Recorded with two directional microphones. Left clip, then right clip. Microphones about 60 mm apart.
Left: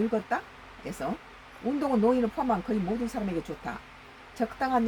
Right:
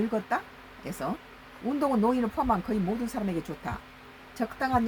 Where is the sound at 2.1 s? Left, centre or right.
Right.